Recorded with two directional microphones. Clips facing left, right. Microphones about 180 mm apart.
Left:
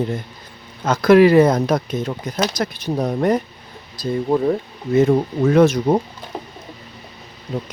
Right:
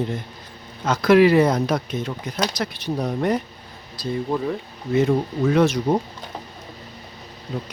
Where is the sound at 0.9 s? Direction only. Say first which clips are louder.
Left 3 dB; 45° left (ahead or behind).